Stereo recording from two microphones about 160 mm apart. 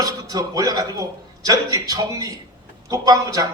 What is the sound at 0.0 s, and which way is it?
A man's voice, 25° right (ahead or behind).